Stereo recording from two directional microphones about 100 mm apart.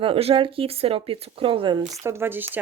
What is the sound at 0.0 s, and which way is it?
Speech, 75° right (ahead or behind).